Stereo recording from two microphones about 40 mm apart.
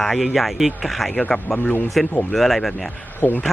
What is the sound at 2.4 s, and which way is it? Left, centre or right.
Speech, centre.